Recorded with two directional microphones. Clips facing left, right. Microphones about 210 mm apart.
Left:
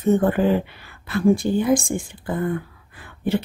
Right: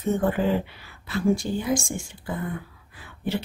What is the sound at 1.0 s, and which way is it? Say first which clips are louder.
A woman's voice: left 5 dB; 55° left (ahead or behind).